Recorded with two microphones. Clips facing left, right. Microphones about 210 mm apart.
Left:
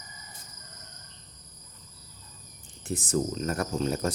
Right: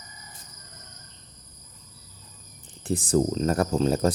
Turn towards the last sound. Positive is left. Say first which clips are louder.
# right 6 dB
turn(degrees=-35)  # may be behind; listen again after turning